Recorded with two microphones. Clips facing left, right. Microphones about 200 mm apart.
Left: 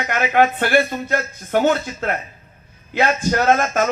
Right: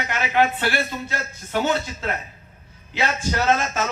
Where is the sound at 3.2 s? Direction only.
50° left (ahead or behind).